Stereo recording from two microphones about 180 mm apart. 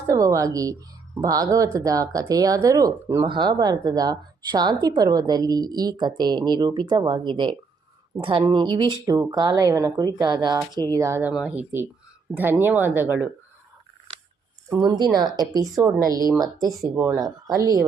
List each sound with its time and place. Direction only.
0.1 s a woman's voice: 20° right (ahead or behind)
14.8 s a woman's voice: 25° right (ahead or behind)